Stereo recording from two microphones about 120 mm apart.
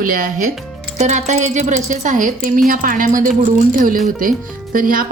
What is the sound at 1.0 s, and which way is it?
A woman's voice, 75° right (ahead or behind).